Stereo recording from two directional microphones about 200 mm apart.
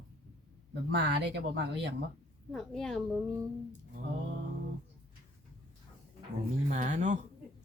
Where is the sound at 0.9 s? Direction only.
60° right (ahead or behind).